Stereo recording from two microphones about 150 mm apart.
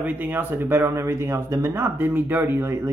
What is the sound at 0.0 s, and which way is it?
Speech, 10° right (ahead or behind).